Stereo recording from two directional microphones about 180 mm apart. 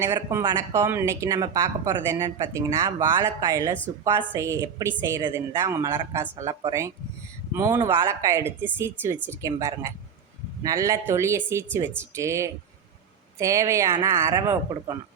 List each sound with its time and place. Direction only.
0.0 s speech: 15° right (ahead or behind)